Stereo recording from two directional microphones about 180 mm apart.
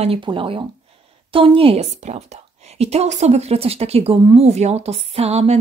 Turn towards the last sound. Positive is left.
turn(degrees=-35)  # may be behind; listen again after turning